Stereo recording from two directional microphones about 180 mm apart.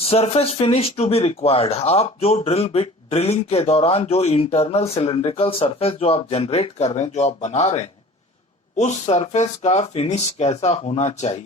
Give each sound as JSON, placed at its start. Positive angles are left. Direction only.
{"t": 0.0, "sound": "speech", "side_deg": 35}